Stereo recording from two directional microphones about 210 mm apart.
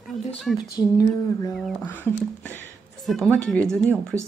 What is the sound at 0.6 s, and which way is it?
Speech, 15° left (ahead or behind).